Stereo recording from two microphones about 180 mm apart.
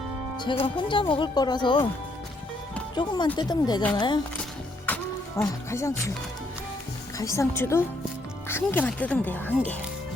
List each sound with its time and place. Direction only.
0.6 s speech: 25° left (ahead or behind)
2.9 s speech: 25° left (ahead or behind)
4.9 s music: 10° left (ahead or behind)
5.4 s speech: 15° left (ahead or behind)
7.2 s speech: 15° left (ahead or behind)